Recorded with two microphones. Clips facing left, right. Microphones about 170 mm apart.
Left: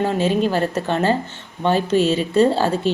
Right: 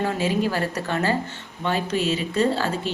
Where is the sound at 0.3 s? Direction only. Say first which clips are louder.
Left 5 dB; 25° left (ahead or behind).